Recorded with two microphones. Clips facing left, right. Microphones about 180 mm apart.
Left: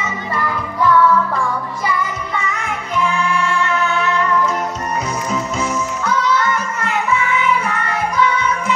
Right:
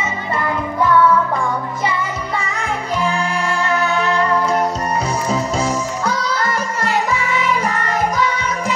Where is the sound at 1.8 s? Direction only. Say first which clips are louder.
Left 1 dB; 30° right (ahead or behind).